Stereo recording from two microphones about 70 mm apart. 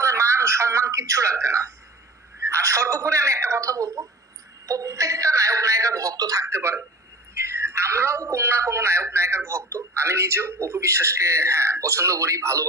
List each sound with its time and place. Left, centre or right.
0.0 s a woman's voice: right
6.4 s speech: right